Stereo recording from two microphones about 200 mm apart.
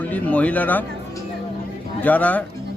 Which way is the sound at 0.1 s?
5° left (ahead or behind).